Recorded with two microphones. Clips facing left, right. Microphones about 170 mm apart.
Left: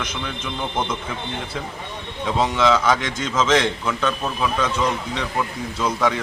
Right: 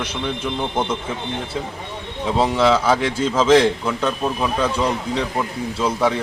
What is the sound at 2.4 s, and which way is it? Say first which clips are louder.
A man's voice: right 2 dB; 30° right (ahead or behind).